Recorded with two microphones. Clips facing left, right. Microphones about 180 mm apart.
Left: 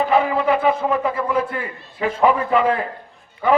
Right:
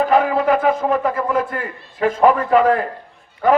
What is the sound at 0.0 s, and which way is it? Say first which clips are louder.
A man's voice: right 2 dB; 45° right (ahead or behind).